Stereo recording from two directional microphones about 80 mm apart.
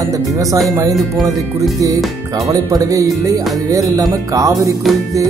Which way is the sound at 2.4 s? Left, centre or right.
Right.